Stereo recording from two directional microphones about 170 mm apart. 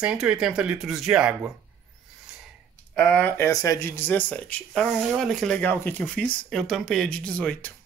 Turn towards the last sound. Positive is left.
turn(degrees=10)  # may be behind; listen again after turning